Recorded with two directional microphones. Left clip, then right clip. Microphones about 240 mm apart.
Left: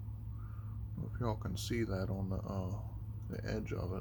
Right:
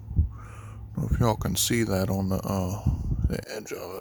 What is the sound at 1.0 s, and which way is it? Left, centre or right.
Speech, right.